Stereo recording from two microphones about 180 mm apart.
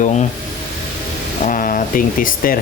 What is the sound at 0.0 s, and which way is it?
Speech, 40° left (ahead or behind).